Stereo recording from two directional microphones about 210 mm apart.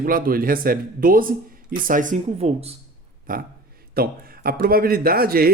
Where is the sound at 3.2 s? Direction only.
40° right (ahead or behind).